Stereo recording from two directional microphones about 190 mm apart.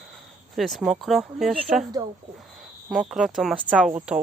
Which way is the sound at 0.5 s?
Centre (ahead or behind).